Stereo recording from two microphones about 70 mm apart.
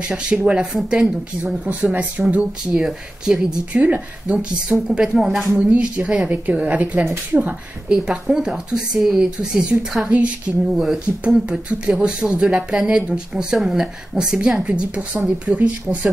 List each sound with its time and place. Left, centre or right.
0.3 s speech: centre
2.7 s speech: centre
5.7 s a woman's voice: centre